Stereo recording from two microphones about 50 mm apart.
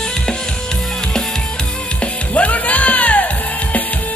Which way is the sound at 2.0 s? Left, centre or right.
Left.